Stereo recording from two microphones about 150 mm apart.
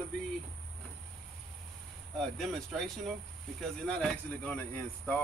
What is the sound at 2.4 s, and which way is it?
Speech, centre (ahead or behind).